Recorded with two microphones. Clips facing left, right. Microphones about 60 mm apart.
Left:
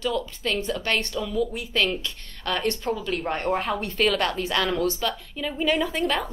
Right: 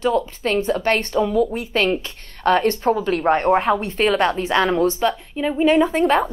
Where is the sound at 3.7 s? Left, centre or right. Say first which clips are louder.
Right 5 dB; right.